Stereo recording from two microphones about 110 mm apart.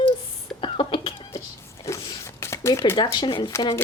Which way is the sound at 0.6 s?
50° left (ahead or behind).